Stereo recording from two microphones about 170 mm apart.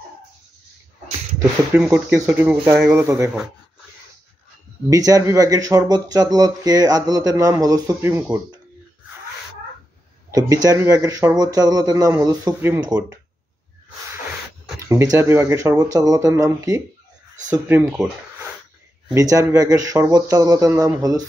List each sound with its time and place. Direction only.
1.8 s speech: 5° right (ahead or behind)
3.0 s speech: 15° right (ahead or behind)
4.8 s speech: 20° right (ahead or behind)
10.3 s speech: 20° right (ahead or behind)
14.9 s speech: 20° right (ahead or behind)
19.0 s speech: 20° right (ahead or behind)